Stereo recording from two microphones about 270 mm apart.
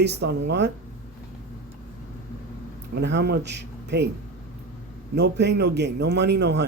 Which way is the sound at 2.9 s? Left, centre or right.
Right.